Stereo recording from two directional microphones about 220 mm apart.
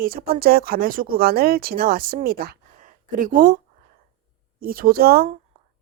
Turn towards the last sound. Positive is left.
turn(degrees=-45)  # may be behind; listen again after turning